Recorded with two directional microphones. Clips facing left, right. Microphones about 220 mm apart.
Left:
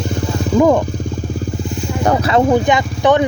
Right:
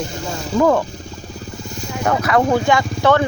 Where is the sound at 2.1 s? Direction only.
30° left (ahead or behind).